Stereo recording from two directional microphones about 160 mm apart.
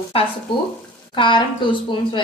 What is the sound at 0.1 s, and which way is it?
A woman's voice, 35° left (ahead or behind).